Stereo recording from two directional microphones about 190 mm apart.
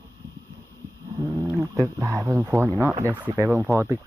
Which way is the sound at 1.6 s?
15° right (ahead or behind).